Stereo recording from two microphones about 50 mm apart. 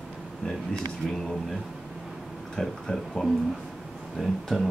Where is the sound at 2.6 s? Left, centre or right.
Centre.